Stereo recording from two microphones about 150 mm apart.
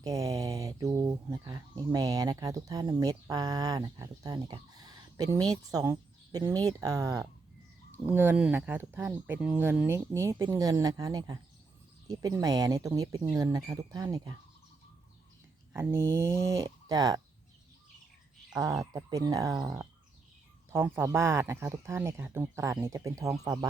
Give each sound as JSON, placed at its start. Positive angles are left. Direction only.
{"t": 0.0, "sound": "a sound", "side_deg": -20}
{"t": 1.9, "sound": "speech", "side_deg": -25}
{"t": 15.7, "sound": "speech", "side_deg": -15}
{"t": 18.5, "sound": "speech", "side_deg": -25}